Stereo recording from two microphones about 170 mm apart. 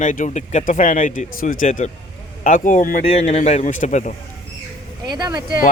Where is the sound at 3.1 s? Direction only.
40° left (ahead or behind).